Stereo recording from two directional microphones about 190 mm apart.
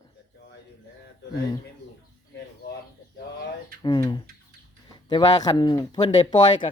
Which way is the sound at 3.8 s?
25° left (ahead or behind).